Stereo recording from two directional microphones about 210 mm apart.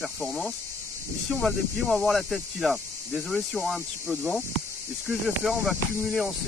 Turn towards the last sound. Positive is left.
turn(degrees=0)  # may be behind; listen again after turning